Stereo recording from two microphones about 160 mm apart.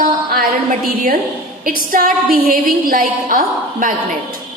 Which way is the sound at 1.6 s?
60° right (ahead or behind).